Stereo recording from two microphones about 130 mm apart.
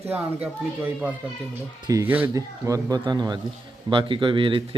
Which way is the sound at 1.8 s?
25° right (ahead or behind).